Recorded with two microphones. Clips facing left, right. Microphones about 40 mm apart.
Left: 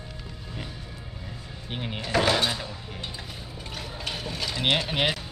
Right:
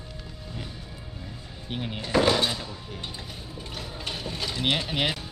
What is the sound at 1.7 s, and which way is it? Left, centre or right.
Speech, centre.